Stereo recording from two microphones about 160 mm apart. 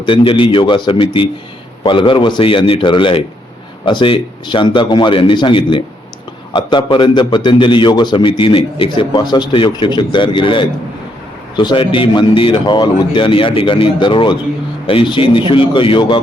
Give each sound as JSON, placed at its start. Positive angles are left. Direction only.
{"t": 0.0, "sound": "a man's voice", "side_deg": 30}